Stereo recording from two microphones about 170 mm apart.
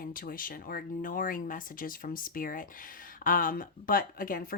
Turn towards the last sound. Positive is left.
turn(degrees=55)  # may be behind; listen again after turning